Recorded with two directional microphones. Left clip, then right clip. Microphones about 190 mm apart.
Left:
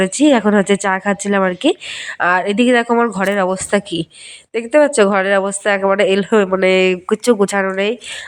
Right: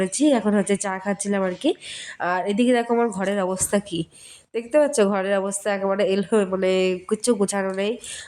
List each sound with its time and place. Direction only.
0.0 s a woman's voice: 20° left (ahead or behind)